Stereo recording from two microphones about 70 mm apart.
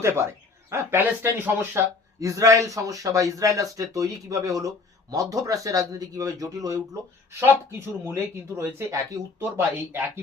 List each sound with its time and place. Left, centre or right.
0.0 s speech: right
2.2 s speech: right
7.3 s speech: right
9.4 s speech: right